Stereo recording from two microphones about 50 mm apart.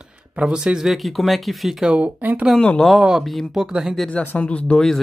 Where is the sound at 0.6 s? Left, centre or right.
Centre.